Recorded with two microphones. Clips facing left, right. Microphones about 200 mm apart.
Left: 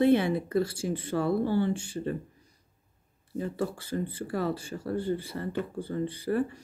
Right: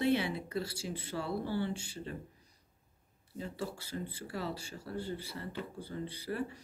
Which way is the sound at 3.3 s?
50° left (ahead or behind).